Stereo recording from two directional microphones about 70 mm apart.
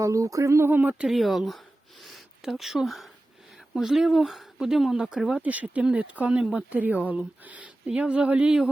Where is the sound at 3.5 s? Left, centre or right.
Centre.